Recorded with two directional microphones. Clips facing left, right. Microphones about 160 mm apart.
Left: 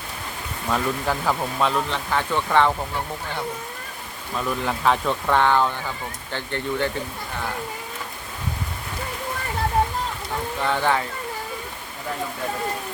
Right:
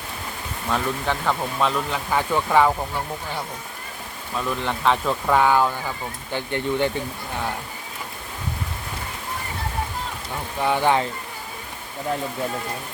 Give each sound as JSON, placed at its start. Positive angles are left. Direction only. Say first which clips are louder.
{"t": 0.7, "sound": "speech", "louder": "left 1 dB", "side_deg": 5}
{"t": 2.0, "sound": "speech", "louder": "right 1 dB", "side_deg": -10}
{"t": 4.4, "sound": "speech", "louder": "even", "side_deg": 5}
{"t": 10.6, "sound": "speech", "louder": "right 3 dB", "side_deg": -15}